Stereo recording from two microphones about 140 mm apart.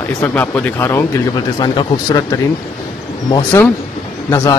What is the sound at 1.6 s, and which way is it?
Speech, 35° left (ahead or behind).